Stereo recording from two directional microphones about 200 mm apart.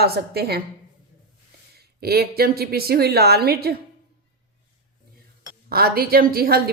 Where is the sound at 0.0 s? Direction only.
50° right (ahead or behind).